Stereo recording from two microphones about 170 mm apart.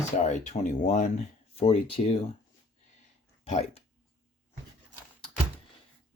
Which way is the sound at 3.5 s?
40° left (ahead or behind).